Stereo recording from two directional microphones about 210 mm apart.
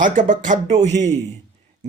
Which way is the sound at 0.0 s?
35° right (ahead or behind).